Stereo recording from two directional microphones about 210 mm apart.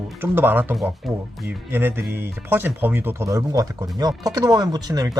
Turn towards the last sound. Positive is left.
turn(degrees=-15)  # may be behind; listen again after turning